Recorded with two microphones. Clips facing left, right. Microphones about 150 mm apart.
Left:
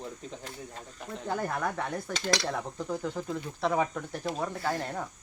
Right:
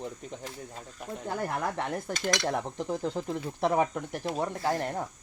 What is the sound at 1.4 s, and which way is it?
Speech, 25° right (ahead or behind).